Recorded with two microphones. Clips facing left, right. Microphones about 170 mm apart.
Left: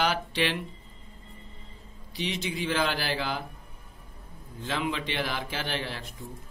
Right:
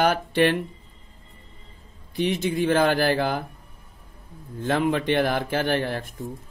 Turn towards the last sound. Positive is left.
turn(degrees=-50)  # may be behind; listen again after turning